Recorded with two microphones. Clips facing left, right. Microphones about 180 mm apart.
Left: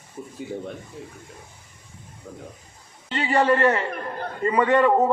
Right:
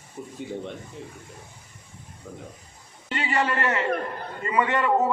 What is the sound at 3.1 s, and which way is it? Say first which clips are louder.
A man's voice: left 6 dB; 35° left (ahead or behind).